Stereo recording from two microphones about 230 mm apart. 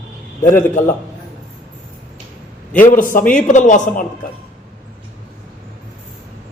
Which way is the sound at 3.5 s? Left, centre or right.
Left.